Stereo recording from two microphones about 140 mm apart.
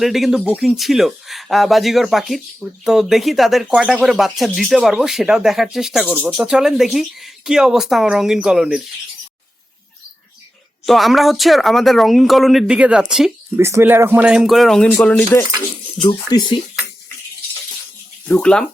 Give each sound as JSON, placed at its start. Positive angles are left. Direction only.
{"t": 0.0, "sound": "speech", "side_deg": 0}
{"t": 10.8, "sound": "speech", "side_deg": 0}
{"t": 13.6, "sound": "speech", "side_deg": -20}
{"t": 16.0, "sound": "speech", "side_deg": 30}
{"t": 18.3, "sound": "speech", "side_deg": 10}